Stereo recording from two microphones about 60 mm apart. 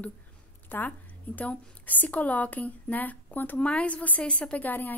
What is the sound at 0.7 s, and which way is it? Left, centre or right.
A woman's voice, left.